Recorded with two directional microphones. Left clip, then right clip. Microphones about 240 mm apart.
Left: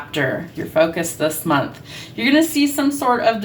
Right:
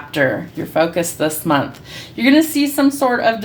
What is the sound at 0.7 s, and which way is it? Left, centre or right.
Speech, right.